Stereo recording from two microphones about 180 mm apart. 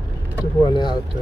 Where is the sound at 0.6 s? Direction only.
25° left (ahead or behind).